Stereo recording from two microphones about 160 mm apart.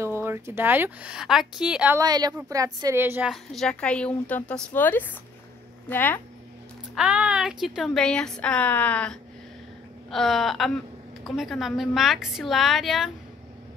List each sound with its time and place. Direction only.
0.0 s a woman's voice: 15° right (ahead or behind)
2.0 s a woman's voice: 25° right (ahead or behind)
3.3 s a woman's voice: 5° left (ahead or behind)
7.0 s a woman's voice: 5° right (ahead or behind)